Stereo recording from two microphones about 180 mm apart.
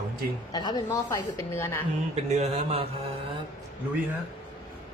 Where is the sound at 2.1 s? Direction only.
35° right (ahead or behind).